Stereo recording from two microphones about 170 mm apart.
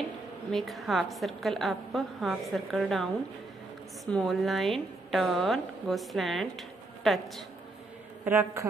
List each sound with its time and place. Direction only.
0.5 s a woman's voice: centre (ahead or behind)
8.3 s a man's voice: 15° right (ahead or behind)